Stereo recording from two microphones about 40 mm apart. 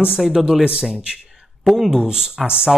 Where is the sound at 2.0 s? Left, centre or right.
Centre.